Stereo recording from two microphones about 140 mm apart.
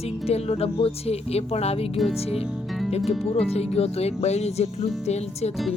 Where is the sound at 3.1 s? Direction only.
45° left (ahead or behind).